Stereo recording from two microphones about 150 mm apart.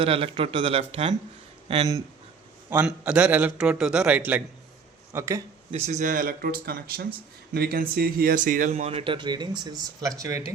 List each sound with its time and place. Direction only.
0.0 s speech: 40° right (ahead or behind)
2.8 s a man's voice: 10° right (ahead or behind)
5.7 s speech: 50° right (ahead or behind); by 8.4 s 90° right
8.4 s speech: 60° right (ahead or behind); by 10.4 s 20° right (ahead or behind)